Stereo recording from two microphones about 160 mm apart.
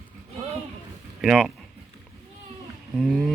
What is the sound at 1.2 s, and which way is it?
Speech, 5° right (ahead or behind).